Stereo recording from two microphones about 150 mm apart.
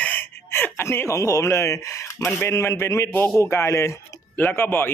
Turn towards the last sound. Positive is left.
turn(degrees=15)  # may be behind; listen again after turning